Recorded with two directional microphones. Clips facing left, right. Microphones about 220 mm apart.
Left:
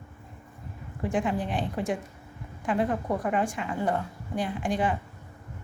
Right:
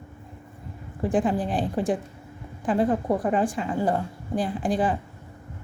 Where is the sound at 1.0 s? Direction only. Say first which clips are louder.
Right 4 dB; 35° right (ahead or behind).